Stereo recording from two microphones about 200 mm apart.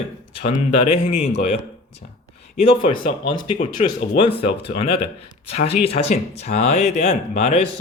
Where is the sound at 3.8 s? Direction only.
35° left (ahead or behind).